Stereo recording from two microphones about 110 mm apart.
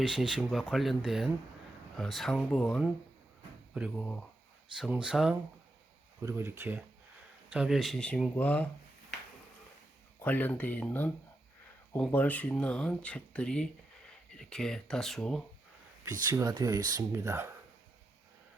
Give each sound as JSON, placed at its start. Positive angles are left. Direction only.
{"t": 0.1, "sound": "speech", "side_deg": -5}
{"t": 6.2, "sound": "speech", "side_deg": -20}
{"t": 7.5, "sound": "speech", "side_deg": -5}
{"t": 10.2, "sound": "speech", "side_deg": 15}
{"t": 16.0, "sound": "speech", "side_deg": -35}